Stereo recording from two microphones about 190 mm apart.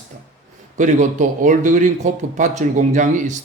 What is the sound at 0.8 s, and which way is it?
A man's voice, 40° right (ahead or behind).